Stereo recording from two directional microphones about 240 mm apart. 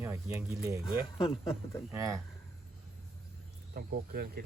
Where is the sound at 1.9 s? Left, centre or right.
Centre.